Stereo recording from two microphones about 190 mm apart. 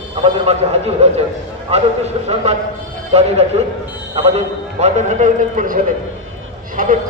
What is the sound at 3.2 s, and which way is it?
A man's voice, 35° right (ahead or behind).